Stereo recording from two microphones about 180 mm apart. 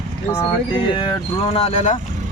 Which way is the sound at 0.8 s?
25° left (ahead or behind).